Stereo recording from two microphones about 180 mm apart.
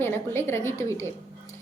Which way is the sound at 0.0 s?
15° left (ahead or behind).